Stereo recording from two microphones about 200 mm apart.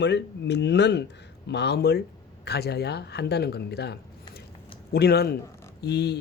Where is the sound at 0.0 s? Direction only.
60° left (ahead or behind).